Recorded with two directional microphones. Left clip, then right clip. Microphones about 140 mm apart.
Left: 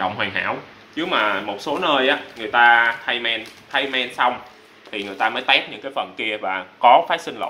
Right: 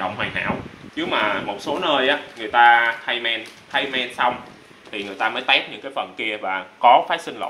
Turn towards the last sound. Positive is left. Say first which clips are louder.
# left 1 dB
turn(degrees=5)  # may be behind; listen again after turning